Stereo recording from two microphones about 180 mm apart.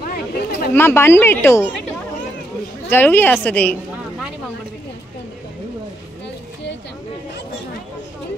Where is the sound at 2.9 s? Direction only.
10° left (ahead or behind).